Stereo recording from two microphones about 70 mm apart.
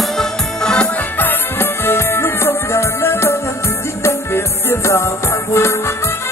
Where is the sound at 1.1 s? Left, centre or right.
Left.